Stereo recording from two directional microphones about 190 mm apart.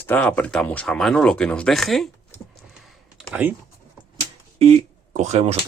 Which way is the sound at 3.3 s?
10° right (ahead or behind).